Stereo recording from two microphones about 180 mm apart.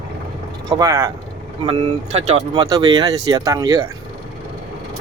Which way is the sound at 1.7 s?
35° right (ahead or behind).